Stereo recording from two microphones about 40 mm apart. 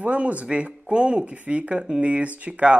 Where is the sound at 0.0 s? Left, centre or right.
Right.